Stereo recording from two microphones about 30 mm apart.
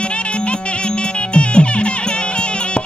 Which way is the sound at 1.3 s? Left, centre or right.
Left.